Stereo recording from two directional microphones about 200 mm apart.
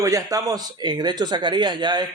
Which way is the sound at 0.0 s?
15° right (ahead or behind).